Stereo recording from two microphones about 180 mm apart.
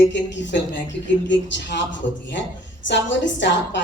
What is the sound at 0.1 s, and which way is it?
A woman's voice, 80° left.